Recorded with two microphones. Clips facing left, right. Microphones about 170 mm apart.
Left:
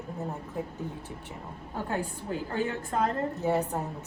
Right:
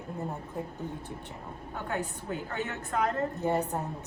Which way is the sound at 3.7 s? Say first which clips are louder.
Left 1 dB; centre (ahead or behind).